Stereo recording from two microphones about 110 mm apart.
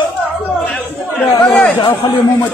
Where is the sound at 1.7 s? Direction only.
40° left (ahead or behind).